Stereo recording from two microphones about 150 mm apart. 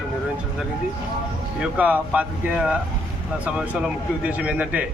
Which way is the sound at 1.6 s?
10° right (ahead or behind).